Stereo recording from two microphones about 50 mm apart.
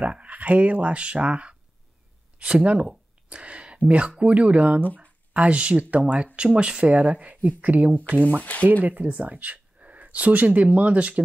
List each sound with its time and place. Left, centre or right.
0.0 s speech: right
3.3 s a sound: right
4.2 s speech: right
8.2 s speech: left
8.8 s speech: right